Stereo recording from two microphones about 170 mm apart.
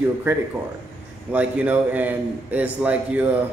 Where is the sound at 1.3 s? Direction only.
10° right (ahead or behind).